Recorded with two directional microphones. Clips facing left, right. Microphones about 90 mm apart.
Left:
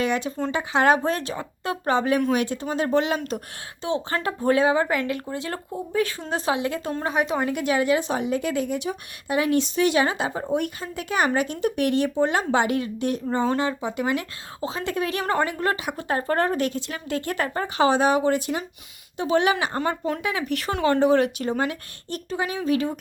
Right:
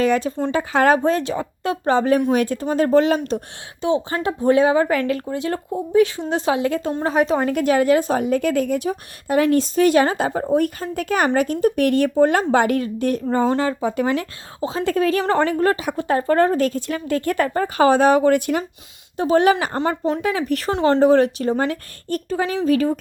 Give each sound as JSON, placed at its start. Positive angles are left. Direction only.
{"t": 0.0, "sound": "speech", "side_deg": -35}
{"t": 3.9, "sound": "speech", "side_deg": -20}
{"t": 4.8, "sound": "speech", "side_deg": 20}
{"t": 5.5, "sound": "a woman's voice", "side_deg": -25}
{"t": 13.3, "sound": "a woman's voice", "side_deg": -35}
{"t": 19.1, "sound": "speech", "side_deg": -40}
{"t": 19.7, "sound": "speech", "side_deg": -25}
{"t": 20.2, "sound": "speech", "side_deg": -40}